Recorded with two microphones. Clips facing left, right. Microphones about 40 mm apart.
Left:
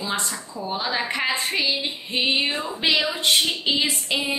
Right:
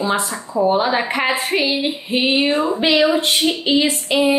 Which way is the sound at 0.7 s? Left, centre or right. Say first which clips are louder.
Right 6 dB; right.